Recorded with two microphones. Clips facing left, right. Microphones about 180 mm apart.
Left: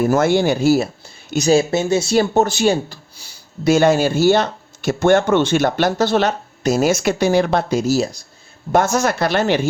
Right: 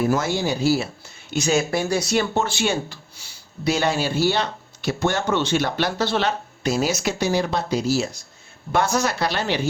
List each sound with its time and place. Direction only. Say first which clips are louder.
0.0 s speech: left 5 dB; 45° left (ahead or behind)
0.3 s speech: left 6 dB; 60° left (ahead or behind)
1.3 s speech: left 6 dB; 35° left (ahead or behind)
1.7 s speech: left 5 dB; 25° left (ahead or behind); by 9.6 s 50° left (ahead or behind)